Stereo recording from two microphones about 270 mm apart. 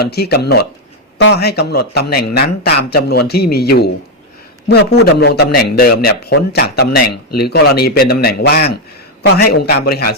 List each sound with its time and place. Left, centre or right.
0.0 s a man's voice: left